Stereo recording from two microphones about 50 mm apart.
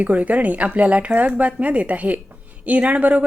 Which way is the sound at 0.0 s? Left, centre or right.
Right.